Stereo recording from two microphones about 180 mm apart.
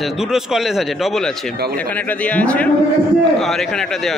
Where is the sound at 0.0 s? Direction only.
5° right (ahead or behind).